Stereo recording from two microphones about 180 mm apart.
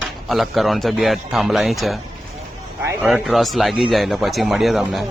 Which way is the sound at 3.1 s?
Centre (ahead or behind).